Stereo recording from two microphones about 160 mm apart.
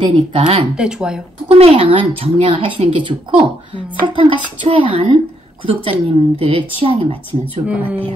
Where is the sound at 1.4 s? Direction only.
40° right (ahead or behind).